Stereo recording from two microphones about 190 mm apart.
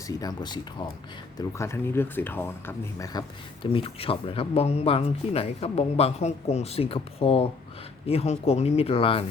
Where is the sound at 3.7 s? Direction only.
30° left (ahead or behind).